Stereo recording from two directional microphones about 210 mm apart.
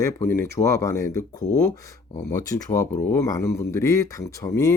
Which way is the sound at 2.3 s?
15° left (ahead or behind).